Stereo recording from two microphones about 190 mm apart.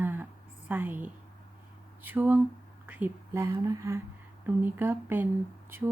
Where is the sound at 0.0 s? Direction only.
10° right (ahead or behind).